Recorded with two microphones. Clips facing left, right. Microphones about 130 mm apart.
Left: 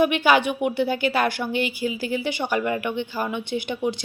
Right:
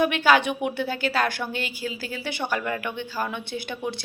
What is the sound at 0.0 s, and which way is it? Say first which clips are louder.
Speech: left 2 dB; 15° left (ahead or behind).